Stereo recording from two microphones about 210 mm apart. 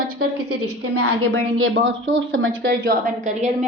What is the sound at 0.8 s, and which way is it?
A woman's voice, 90° right.